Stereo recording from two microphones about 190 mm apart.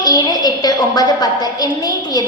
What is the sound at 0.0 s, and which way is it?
A woman's voice, 20° left (ahead or behind).